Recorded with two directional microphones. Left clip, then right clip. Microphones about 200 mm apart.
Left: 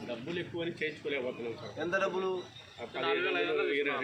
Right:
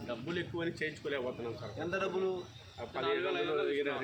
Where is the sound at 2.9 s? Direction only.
30° right (ahead or behind).